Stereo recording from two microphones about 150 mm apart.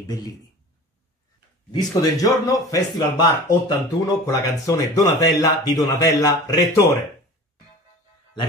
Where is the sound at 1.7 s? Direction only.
25° left (ahead or behind).